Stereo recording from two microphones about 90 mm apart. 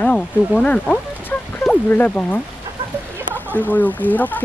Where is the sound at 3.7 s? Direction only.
20° left (ahead or behind).